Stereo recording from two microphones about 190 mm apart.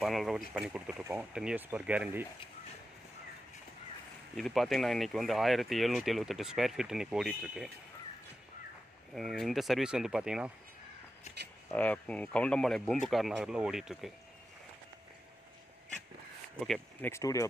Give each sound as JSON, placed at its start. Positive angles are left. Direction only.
{"t": 0.0, "sound": "speech", "side_deg": 0}
{"t": 4.4, "sound": "speech", "side_deg": 0}
{"t": 9.1, "sound": "speech", "side_deg": 0}
{"t": 11.7, "sound": "speech", "side_deg": 10}
{"t": 16.5, "sound": "speech", "side_deg": 5}
{"t": 17.1, "sound": "speech", "side_deg": 15}